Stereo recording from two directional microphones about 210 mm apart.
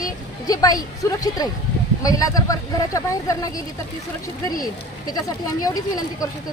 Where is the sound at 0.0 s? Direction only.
15° left (ahead or behind).